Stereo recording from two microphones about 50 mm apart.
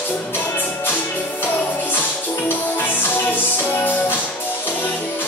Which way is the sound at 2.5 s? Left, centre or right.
Left.